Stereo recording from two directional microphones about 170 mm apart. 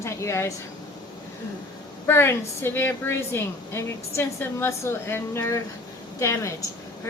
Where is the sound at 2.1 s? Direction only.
15° left (ahead or behind).